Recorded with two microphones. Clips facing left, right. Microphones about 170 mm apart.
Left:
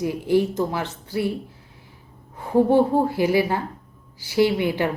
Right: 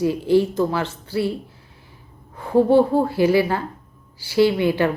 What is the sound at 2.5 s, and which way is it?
Speech, 15° left (ahead or behind).